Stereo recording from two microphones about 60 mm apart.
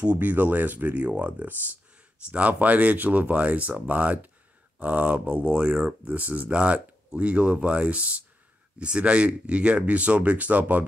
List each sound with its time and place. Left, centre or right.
0.1 s speech: right